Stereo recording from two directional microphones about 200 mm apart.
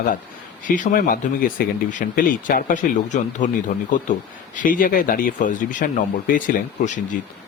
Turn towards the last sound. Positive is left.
turn(degrees=40)  # may be behind; listen again after turning